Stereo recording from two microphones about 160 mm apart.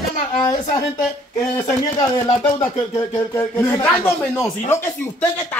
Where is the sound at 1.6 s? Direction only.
20° left (ahead or behind).